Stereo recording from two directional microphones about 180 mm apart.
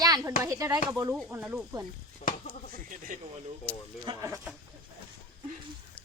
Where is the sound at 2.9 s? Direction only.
45° right (ahead or behind).